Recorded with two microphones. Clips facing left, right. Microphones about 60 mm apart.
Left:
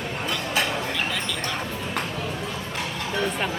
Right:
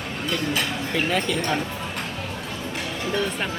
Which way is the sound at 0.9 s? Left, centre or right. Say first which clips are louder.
Right 5 dB; right.